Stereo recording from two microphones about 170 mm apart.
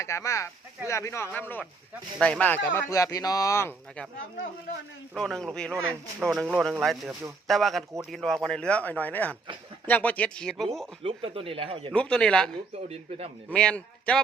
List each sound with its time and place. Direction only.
0.0 s speech: 15° left (ahead or behind)
5.1 s speech: 5° left (ahead or behind)
11.0 s speech: 30° right (ahead or behind)
11.9 s speech: 5° left (ahead or behind)
12.9 s speech: 40° right (ahead or behind)
13.5 s speech: 5° left (ahead or behind)